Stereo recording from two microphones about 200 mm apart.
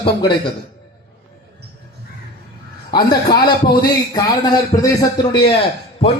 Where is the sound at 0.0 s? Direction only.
25° left (ahead or behind).